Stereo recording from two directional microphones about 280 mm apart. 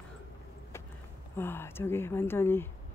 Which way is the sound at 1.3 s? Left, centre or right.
Centre.